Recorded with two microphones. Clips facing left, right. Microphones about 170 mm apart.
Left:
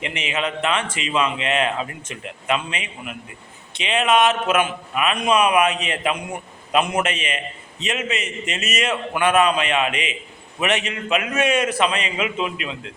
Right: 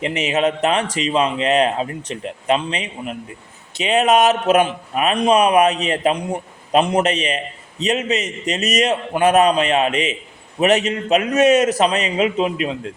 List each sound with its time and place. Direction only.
0.0 s a man's voice: 40° right (ahead or behind)